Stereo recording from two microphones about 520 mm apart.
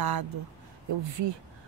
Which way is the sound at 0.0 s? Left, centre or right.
Right.